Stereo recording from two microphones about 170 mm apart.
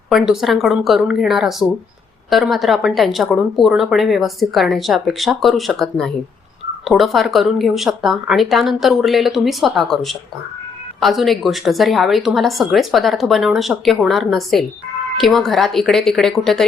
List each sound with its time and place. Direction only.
0.1 s speech: centre (ahead or behind)